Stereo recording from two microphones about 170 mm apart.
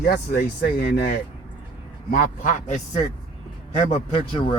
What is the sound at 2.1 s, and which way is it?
Speech, 55° left (ahead or behind).